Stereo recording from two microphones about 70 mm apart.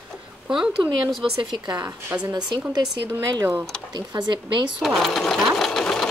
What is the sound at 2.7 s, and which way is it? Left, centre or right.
Speech, right.